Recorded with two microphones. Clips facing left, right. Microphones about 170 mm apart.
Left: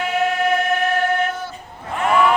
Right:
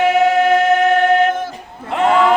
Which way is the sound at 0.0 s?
90° right.